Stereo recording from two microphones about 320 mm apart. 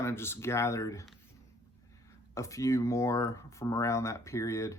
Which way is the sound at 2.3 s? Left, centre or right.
Centre.